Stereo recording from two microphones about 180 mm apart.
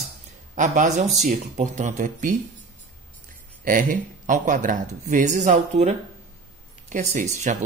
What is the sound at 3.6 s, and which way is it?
Speech, 50° right (ahead or behind).